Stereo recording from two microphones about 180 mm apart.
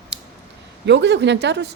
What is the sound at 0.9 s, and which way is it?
Speech, 75° right (ahead or behind).